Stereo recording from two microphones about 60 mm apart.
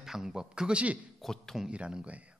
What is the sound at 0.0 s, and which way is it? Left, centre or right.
Speech, centre.